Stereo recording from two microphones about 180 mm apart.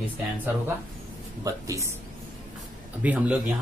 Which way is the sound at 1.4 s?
15° right (ahead or behind).